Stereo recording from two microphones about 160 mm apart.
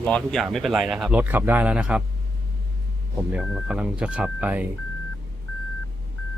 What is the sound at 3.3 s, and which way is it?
Speech, 5° right (ahead or behind).